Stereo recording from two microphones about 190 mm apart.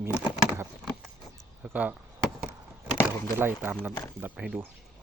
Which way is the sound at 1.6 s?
10° right (ahead or behind).